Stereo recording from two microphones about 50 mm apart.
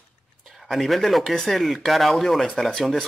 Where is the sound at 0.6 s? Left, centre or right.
Centre.